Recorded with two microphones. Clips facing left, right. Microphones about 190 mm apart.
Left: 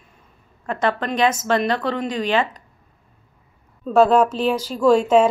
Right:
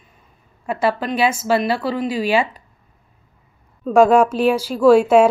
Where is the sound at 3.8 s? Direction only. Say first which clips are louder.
Right 2 dB; 10° right (ahead or behind).